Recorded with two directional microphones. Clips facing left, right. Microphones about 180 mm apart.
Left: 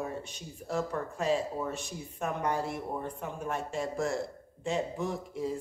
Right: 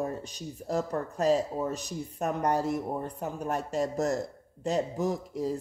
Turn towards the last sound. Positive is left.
turn(degrees=-40)  # may be behind; listen again after turning